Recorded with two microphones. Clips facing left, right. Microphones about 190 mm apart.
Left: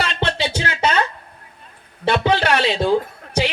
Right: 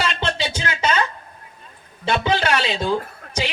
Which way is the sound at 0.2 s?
65° left (ahead or behind).